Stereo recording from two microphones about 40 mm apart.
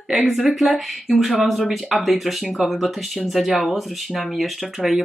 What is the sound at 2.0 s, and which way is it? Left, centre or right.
Speech, centre.